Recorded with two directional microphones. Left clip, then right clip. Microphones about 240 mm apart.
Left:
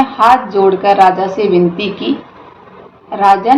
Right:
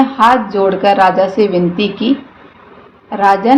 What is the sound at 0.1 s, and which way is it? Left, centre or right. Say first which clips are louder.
Speech: left 1 dB; right.